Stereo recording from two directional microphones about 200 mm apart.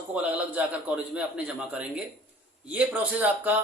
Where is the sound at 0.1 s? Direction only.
5° right (ahead or behind).